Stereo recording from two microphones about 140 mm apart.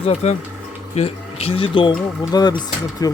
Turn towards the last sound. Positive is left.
turn(degrees=30)  # may be behind; listen again after turning